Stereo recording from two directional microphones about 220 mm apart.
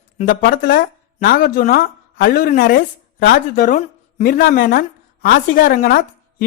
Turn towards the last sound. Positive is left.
turn(degrees=40)  # may be behind; listen again after turning